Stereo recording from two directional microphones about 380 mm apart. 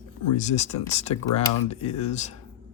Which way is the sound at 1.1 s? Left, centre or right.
Left.